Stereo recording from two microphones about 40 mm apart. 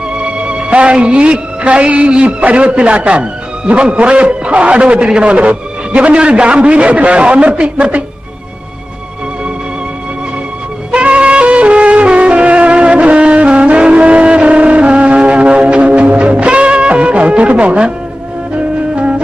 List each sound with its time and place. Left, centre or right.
0.1 s music: right
1.0 s a man's voice: right
10.9 s music: right